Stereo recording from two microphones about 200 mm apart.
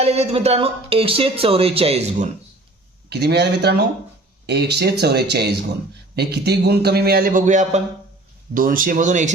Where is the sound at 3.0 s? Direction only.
55° right (ahead or behind).